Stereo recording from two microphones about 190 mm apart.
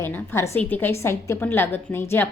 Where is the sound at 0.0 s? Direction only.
10° left (ahead or behind).